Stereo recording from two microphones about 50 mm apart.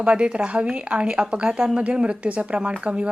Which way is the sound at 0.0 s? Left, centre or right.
Right.